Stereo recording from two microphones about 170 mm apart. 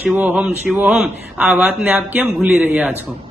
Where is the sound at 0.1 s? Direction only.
10° right (ahead or behind).